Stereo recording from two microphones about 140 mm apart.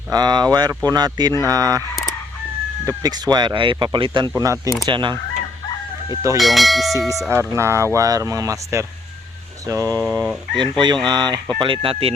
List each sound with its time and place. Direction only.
0.1 s speech: 30° right (ahead or behind)
2.8 s speech: 30° right (ahead or behind)
4.4 s speech: 25° right (ahead or behind)
4.9 s speech: 35° right (ahead or behind)
6.3 s speech: centre (ahead or behind)
7.3 s speech: 20° right (ahead or behind)
10.0 s speech: 5° right (ahead or behind)
10.5 s speech: 35° right (ahead or behind)